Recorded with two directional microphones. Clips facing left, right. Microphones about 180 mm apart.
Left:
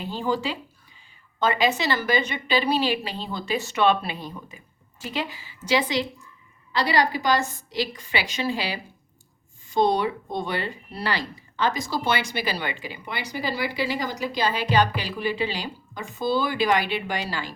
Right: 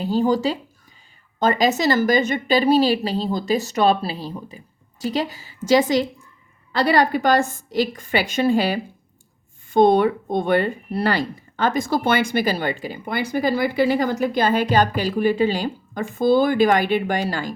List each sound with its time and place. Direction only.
0.0 s a woman's voice: 40° right (ahead or behind)